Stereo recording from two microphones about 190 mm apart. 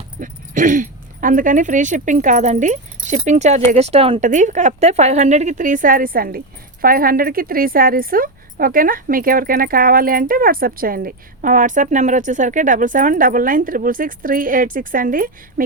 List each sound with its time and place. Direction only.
0.2 s a woman's voice: 45° right (ahead or behind)